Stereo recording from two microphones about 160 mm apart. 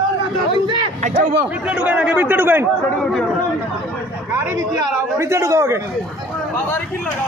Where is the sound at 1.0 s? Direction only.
50° right (ahead or behind).